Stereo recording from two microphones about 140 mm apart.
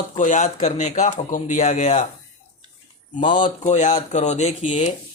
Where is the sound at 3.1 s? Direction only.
65° left (ahead or behind).